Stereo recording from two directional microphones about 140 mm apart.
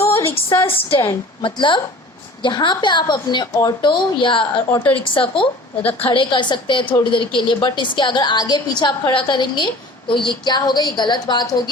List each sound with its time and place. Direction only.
0.0 s a sound: 20° left (ahead or behind)
0.7 s a woman's voice: 40° left (ahead or behind)
4.7 s a woman's voice: 10° left (ahead or behind)
5.0 s a woman's voice: 40° left (ahead or behind)
5.8 s a woman's voice: 10° left (ahead or behind)
6.1 s a woman's voice: 35° left (ahead or behind)